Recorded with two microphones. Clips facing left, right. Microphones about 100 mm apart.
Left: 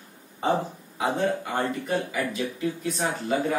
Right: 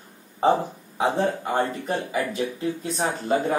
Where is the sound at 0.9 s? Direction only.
30° right (ahead or behind).